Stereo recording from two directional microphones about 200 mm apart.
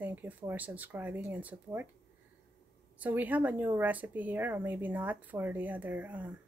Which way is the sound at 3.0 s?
10° right (ahead or behind).